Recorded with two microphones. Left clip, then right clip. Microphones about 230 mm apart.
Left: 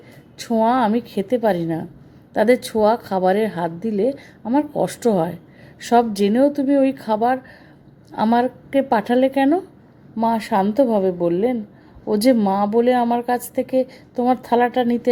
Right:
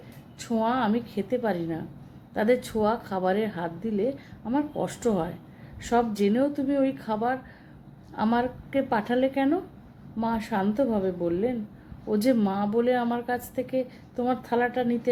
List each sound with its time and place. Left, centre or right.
0.3 s a woman's voice: left